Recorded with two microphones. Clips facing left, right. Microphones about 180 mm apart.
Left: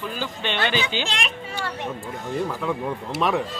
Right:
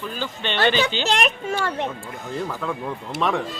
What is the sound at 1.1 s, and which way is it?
Speech, 45° right (ahead or behind).